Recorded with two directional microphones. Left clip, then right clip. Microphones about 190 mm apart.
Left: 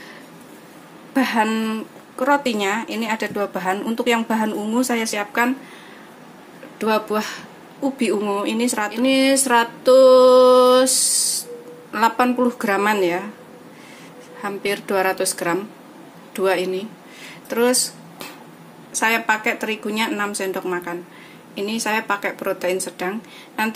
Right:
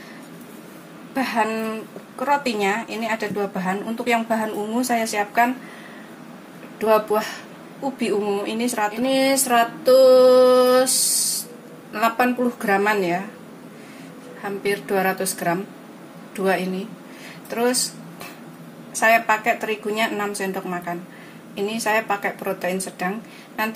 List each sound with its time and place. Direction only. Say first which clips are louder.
1.1 s a woman's voice: left 2 dB; 55° left (ahead or behind)
8.0 s a woman's voice: left 1 dB; 45° left (ahead or behind)
9.8 s a sound: left 2 dB; 40° left (ahead or behind)
11.9 s a woman's voice: left 2 dB; 45° left (ahead or behind)
14.4 s a woman's voice: left 1 dB; 45° left (ahead or behind)
18.9 s a woman's voice: right 2 dB; 45° left (ahead or behind)